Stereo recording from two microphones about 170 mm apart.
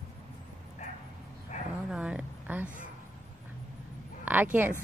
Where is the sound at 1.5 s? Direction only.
45° left (ahead or behind).